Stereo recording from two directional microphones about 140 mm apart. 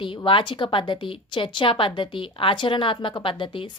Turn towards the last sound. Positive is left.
turn(degrees=35)  # may be behind; listen again after turning